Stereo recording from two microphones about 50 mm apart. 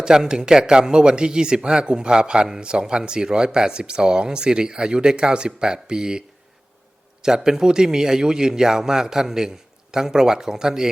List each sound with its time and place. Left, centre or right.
0.0 s speech: centre